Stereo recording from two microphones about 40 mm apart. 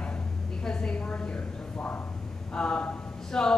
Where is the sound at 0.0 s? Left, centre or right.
Left.